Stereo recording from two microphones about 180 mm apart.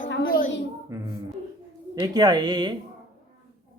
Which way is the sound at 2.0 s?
20° right (ahead or behind).